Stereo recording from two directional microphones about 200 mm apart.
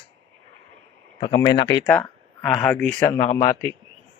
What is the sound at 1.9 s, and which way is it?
A man's voice, 5° left (ahead or behind).